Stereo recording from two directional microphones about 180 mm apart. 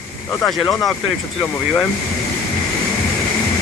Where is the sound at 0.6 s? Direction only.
20° left (ahead or behind).